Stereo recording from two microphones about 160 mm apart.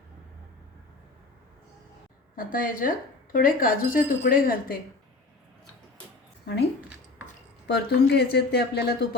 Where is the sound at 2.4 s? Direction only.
60° left (ahead or behind).